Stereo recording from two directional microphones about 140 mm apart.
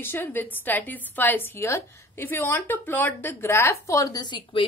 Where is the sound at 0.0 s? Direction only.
15° left (ahead or behind).